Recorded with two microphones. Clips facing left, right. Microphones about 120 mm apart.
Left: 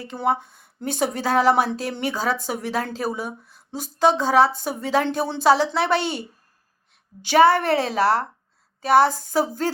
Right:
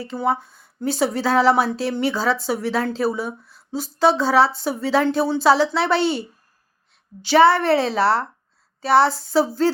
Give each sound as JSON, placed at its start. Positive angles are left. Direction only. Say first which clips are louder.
{"t": 0.0, "sound": "speech", "louder": "right 1 dB", "side_deg": 50}